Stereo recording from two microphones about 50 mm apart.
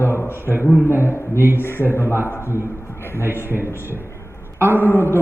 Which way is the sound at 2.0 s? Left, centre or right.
Right.